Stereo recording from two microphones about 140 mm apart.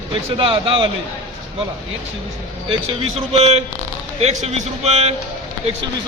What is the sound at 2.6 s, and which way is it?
A man's voice, 45° right (ahead or behind).